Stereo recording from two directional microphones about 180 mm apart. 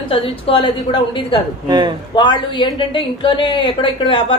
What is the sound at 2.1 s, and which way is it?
Speech, 25° left (ahead or behind).